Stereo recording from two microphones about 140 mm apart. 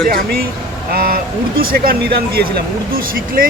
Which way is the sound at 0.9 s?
90° right.